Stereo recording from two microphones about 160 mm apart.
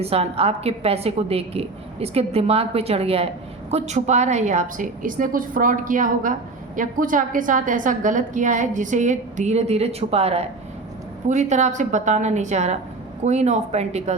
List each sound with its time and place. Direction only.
0.0 s a woman's voice: 40° right (ahead or behind)